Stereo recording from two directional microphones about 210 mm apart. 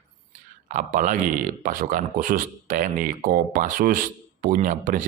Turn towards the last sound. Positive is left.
turn(degrees=-40)  # may be behind; listen again after turning